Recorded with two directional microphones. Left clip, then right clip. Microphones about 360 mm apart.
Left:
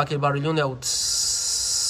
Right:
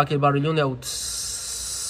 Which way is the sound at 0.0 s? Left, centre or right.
Centre.